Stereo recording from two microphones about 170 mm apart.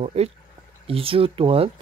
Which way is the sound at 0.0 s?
40° right (ahead or behind).